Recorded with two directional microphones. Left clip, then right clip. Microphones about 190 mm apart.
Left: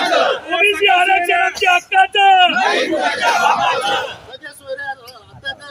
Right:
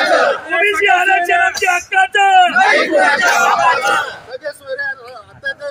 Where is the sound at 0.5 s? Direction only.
25° left (ahead or behind).